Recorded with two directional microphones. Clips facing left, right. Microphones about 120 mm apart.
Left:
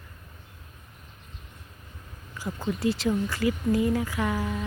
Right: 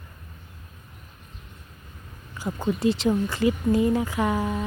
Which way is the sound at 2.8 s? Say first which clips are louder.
Right 3 dB; 25° right (ahead or behind).